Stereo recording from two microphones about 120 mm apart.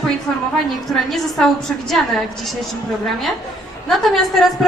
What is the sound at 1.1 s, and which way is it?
Speech, centre (ahead or behind).